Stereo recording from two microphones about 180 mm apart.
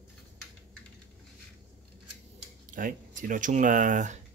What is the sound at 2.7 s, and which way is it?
Speech, 50° right (ahead or behind).